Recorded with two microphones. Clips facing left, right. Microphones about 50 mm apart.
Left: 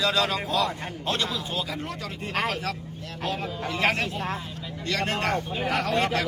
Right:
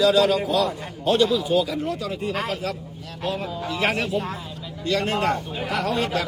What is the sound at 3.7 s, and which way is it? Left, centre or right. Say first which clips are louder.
A man's voice: right 2 dB; left.